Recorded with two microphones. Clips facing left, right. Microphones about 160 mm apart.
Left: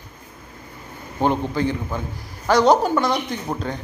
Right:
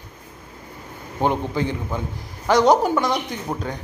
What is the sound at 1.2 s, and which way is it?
A man's voice, 15° right (ahead or behind).